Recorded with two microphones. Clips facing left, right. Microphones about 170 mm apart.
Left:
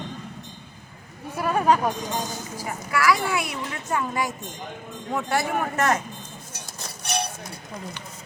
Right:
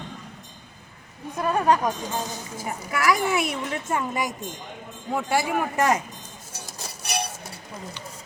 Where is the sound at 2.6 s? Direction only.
20° right (ahead or behind).